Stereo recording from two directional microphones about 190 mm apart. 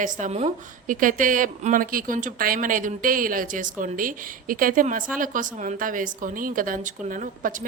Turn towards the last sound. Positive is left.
turn(degrees=-45)  # may be behind; listen again after turning